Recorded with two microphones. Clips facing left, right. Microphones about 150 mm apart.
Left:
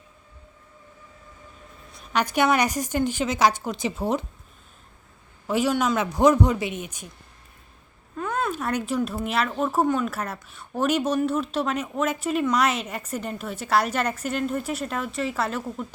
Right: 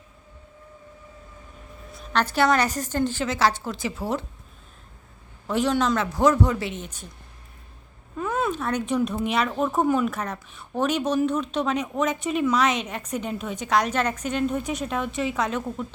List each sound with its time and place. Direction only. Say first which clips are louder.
2.1 s a woman's voice: even; 15° left (ahead or behind)
5.5 s a woman's voice: even; 10° left (ahead or behind)
6.0 s a woman's voice: left 2 dB; 15° left (ahead or behind)
8.2 s a sound: right 1 dB; centre (ahead or behind)
8.5 s a woman's voice: right 1 dB; 10° left (ahead or behind); by 10.1 s 5° right (ahead or behind)
10.1 s a woman's voice: right 1 dB; 5° left (ahead or behind)